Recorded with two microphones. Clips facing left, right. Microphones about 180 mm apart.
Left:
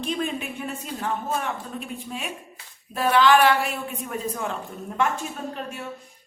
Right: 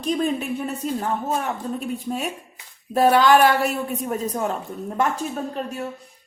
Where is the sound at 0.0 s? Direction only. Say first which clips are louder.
Right 5 dB; 40° right (ahead or behind).